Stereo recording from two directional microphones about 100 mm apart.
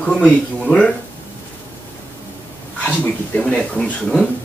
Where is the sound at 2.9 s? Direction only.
15° left (ahead or behind).